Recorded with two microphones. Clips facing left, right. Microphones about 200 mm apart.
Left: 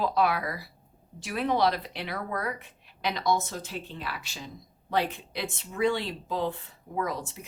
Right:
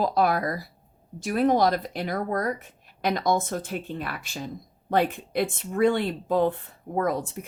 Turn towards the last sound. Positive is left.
turn(degrees=-50)  # may be behind; listen again after turning